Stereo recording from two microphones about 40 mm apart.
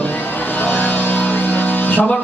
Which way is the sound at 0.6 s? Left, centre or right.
Left.